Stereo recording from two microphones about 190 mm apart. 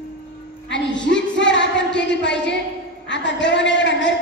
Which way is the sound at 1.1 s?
70° left (ahead or behind).